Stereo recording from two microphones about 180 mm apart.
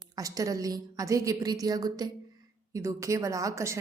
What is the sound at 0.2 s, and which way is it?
A woman's voice, 20° right (ahead or behind).